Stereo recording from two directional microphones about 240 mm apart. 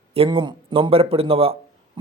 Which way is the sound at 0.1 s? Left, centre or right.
Right.